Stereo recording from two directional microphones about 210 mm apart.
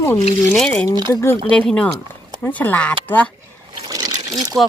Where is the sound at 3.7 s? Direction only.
15° right (ahead or behind).